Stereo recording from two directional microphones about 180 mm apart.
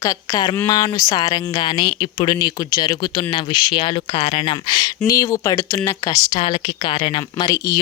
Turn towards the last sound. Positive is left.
turn(degrees=20)  # may be behind; listen again after turning